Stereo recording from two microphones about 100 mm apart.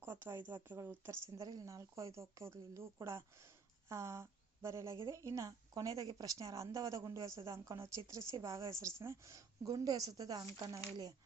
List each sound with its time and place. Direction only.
0.0 s a woman's voice: 20° right (ahead or behind); by 10.4 s 40° right (ahead or behind)